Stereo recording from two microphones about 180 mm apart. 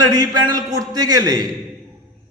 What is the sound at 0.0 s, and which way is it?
A man's voice, 20° right (ahead or behind).